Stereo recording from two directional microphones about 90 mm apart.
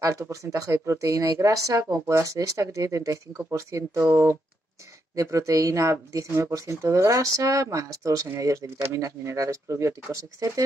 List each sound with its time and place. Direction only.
0.0 s speech: 35° right (ahead or behind)